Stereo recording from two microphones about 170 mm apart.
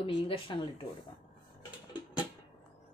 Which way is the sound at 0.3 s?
30° left (ahead or behind).